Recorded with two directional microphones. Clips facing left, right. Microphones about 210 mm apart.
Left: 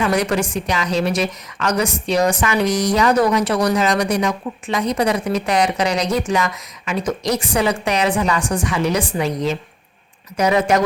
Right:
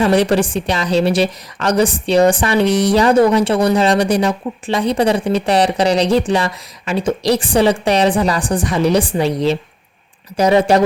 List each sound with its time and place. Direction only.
0.0 s a woman's voice: 30° right (ahead or behind)